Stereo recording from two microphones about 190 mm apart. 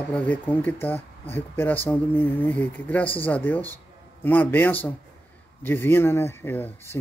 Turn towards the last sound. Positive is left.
turn(degrees=10)  # may be behind; listen again after turning